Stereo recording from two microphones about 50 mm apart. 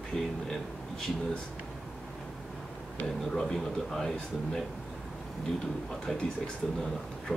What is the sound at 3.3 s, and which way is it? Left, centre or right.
Speech, centre.